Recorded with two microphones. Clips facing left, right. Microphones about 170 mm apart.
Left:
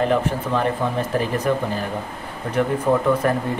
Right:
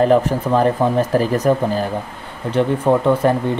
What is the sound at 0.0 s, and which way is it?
Speech, 40° right (ahead or behind).